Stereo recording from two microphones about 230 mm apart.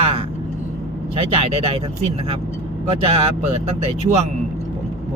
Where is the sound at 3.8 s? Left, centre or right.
Right.